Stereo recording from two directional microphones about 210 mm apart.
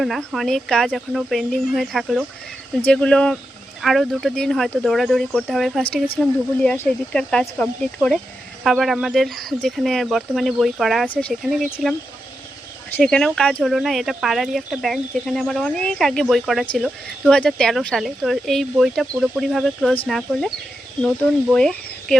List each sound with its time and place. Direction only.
0.0 s speech: centre (ahead or behind)
13.0 s speech: 5° left (ahead or behind)
21.5 s speech: 5° left (ahead or behind)